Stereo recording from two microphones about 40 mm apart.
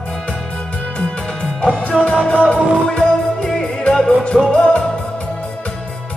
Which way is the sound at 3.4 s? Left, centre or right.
Centre.